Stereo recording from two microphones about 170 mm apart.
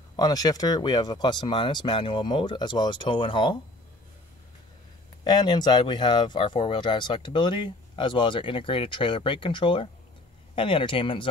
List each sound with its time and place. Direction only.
0.1 s speech: 20° left (ahead or behind)
5.2 s speech: 25° left (ahead or behind)